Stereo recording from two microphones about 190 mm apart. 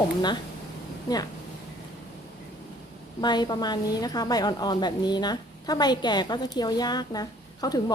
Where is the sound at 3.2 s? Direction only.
20° left (ahead or behind).